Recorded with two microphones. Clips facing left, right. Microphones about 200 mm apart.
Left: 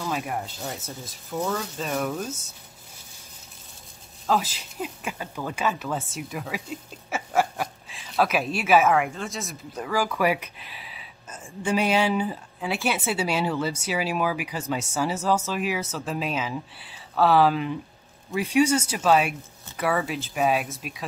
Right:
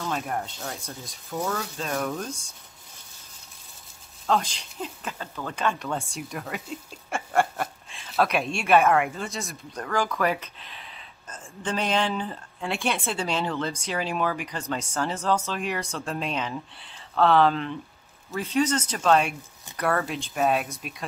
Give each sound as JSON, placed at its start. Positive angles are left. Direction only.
{"t": 0.0, "sound": "speech", "side_deg": 5}
{"t": 4.3, "sound": "speech", "side_deg": 5}